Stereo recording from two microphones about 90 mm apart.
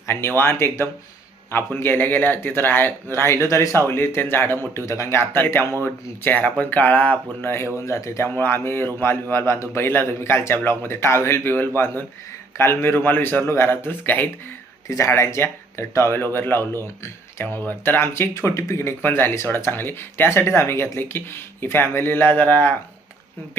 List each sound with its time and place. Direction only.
0.1 s speech: 25° left (ahead or behind)
14.8 s speech: 35° left (ahead or behind)